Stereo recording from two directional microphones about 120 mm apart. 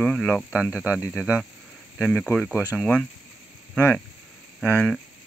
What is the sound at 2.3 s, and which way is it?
Speech, 15° left (ahead or behind).